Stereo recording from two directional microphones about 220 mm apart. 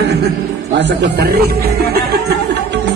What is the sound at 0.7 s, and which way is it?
Music, 55° right (ahead or behind).